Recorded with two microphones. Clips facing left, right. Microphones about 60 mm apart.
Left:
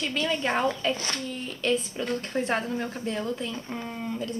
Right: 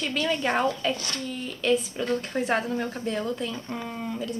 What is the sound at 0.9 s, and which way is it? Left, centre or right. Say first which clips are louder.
Speech: left 1 dB; left.